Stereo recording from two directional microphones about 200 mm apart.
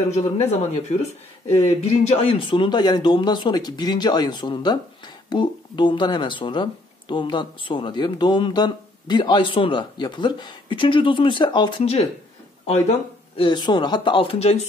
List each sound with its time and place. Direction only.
0.1 s speech: 35° left (ahead or behind)